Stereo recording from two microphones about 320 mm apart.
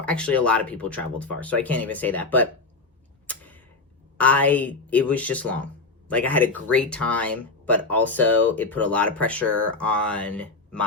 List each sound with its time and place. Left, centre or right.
0.0 s speech: centre
3.2 s tick-tock: centre
4.2 s speech: centre